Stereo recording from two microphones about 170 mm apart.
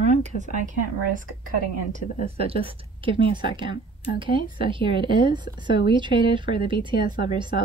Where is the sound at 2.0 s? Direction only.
50° left (ahead or behind).